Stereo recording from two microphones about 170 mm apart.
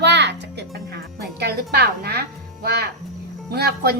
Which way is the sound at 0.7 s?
65° right (ahead or behind).